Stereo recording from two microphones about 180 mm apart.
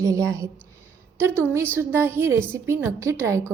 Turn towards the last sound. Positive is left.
turn(degrees=-15)  # may be behind; listen again after turning